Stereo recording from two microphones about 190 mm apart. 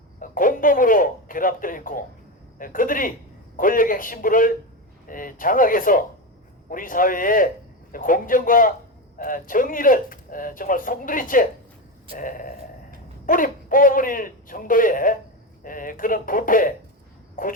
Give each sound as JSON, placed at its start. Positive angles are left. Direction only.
{"t": 0.2, "sound": "a man's voice", "side_deg": 45}